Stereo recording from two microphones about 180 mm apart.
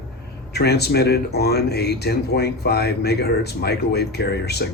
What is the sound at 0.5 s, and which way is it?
Speech, 65° left (ahead or behind).